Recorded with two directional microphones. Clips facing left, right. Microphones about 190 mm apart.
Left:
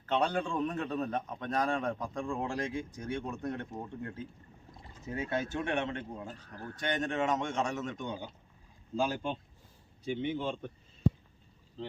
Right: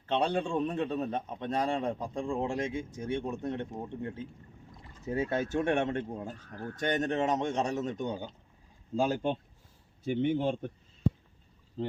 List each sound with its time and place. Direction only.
0.1 s a man's voice: 25° right (ahead or behind)
5.0 s speech: 35° right (ahead or behind)
10.1 s speech: 50° right (ahead or behind)